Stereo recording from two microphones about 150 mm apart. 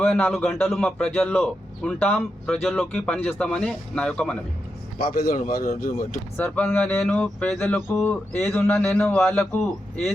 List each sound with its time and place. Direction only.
0.0 s a man's voice: 10° left (ahead or behind)
5.0 s speech: 80° left
6.3 s a man's voice: 10° left (ahead or behind)